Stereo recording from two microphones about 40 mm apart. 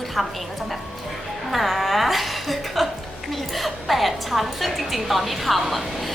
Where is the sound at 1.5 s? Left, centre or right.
Centre.